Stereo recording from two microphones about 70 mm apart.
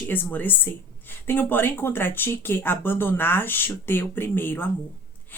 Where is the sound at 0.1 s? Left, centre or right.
Left.